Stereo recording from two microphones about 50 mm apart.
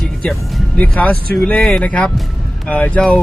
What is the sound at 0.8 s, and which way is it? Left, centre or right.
Speech, left.